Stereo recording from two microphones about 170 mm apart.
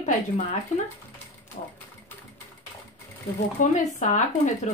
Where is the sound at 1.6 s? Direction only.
55° left (ahead or behind).